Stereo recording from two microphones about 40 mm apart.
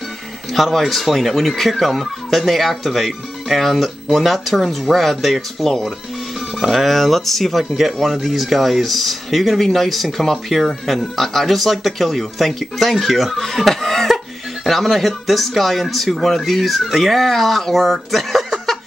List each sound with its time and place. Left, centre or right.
0.5 s speech: centre